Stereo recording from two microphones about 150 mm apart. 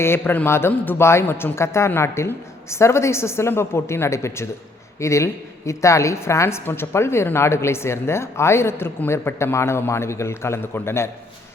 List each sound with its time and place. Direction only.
0.0 s a woman's voice: 15° left (ahead or behind)